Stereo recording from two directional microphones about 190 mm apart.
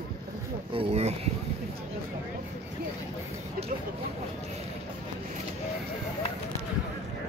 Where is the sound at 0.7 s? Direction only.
35° right (ahead or behind).